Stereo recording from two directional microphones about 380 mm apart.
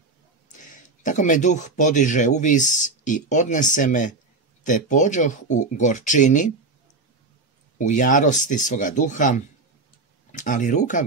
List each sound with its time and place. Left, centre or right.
0.5 s speech: centre
7.8 s speech: centre